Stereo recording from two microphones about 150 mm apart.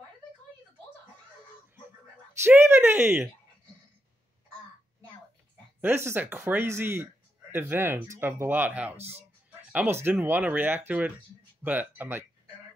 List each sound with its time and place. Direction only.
2.4 s speech: 15° right (ahead or behind)
5.8 s speech: 15° right (ahead or behind)
8.9 s speech: 45° right (ahead or behind)
9.5 s a sound: 10° right (ahead or behind)
10.1 s speech: 10° right (ahead or behind)